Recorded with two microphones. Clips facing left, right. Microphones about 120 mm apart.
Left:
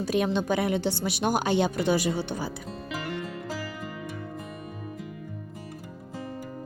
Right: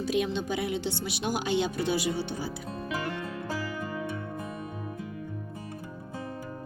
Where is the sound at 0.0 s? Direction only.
45° left (ahead or behind).